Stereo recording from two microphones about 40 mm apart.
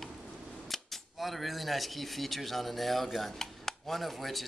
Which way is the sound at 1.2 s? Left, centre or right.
Centre.